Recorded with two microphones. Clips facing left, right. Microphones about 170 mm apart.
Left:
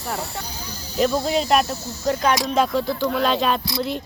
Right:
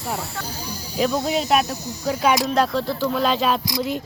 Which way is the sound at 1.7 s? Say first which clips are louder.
Left 2 dB; 15° right (ahead or behind).